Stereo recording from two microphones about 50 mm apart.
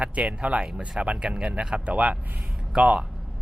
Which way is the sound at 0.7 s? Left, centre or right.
Centre.